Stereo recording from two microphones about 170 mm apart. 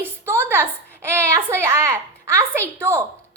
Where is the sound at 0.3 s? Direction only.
15° right (ahead or behind).